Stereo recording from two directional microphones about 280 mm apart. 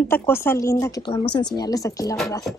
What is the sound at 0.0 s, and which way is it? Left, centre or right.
Speech, centre.